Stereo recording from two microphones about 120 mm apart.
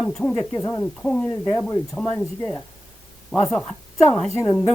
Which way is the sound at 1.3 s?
30° left (ahead or behind).